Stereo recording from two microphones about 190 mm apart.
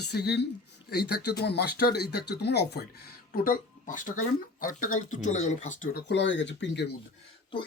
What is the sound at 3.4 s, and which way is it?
Speech, 45° left (ahead or behind).